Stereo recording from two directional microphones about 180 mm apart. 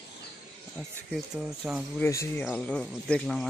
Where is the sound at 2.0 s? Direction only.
15° left (ahead or behind).